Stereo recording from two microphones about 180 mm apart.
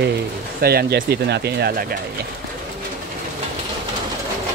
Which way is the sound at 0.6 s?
60° right (ahead or behind).